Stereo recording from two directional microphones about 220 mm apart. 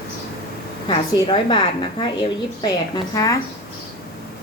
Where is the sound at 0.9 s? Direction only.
20° left (ahead or behind).